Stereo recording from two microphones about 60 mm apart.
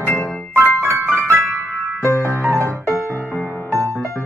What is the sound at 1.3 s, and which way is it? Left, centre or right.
Piano, centre.